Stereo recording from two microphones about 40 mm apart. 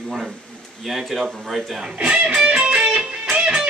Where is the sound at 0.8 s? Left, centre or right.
Centre.